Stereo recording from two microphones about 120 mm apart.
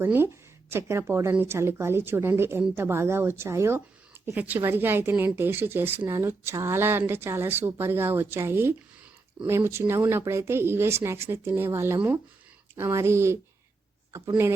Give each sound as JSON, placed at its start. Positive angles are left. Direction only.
{"t": 0.0, "sound": "speech", "side_deg": -20}